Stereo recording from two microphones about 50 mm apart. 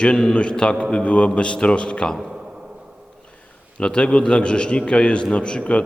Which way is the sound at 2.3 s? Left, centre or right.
Centre.